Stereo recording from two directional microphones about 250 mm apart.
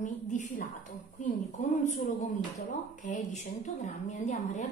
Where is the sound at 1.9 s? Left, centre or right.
Left.